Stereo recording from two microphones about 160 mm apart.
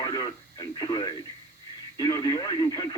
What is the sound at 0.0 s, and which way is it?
Radio, 25° left (ahead or behind).